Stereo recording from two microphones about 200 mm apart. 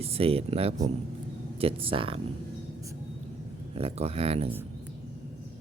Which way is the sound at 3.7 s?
30° right (ahead or behind).